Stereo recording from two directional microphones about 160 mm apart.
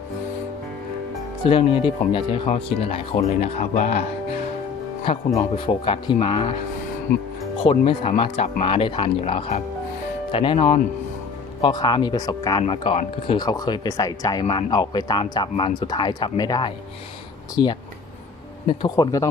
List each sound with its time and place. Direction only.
1.5 s speech: 35° left (ahead or behind)
5.4 s speech: 35° left (ahead or behind)
7.6 s speech: 35° left (ahead or behind)
12.6 s speech: 35° left (ahead or behind)